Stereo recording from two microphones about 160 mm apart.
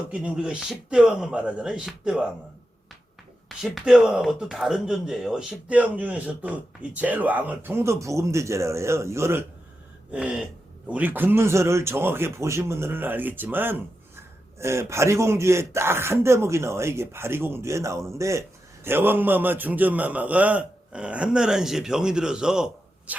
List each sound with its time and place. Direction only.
0.1 s speech: 5° right (ahead or behind)
3.6 s speech: 5° right (ahead or behind)